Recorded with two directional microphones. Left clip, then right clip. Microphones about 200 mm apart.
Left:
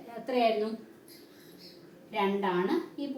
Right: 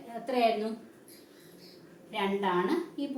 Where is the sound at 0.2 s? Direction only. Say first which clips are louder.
Right 1 dB; 5° left (ahead or behind).